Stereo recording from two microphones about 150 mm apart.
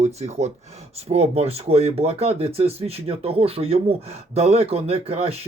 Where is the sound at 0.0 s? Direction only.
45° right (ahead or behind).